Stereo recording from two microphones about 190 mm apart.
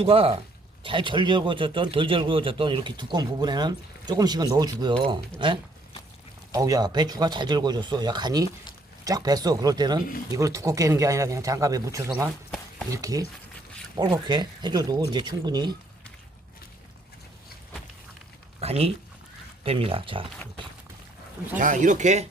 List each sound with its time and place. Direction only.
0.0 s speech: 30° right (ahead or behind)
6.5 s speech: 20° right (ahead or behind)
18.6 s speech: 35° right (ahead or behind)
21.6 s speech: 40° right (ahead or behind)